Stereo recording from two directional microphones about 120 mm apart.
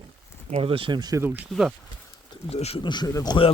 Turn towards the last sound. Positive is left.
turn(degrees=30)  # may be behind; listen again after turning